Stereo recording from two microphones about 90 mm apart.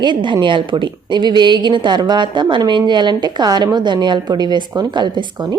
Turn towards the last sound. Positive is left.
turn(degrees=-55)  # may be behind; listen again after turning